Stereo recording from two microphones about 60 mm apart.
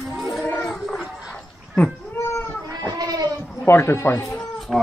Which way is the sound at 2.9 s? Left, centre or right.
Right.